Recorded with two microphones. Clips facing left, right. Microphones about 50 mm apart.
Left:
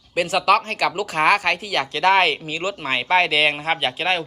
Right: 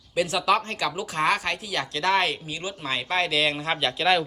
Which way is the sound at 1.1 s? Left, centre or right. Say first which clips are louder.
Left 6 dB; left.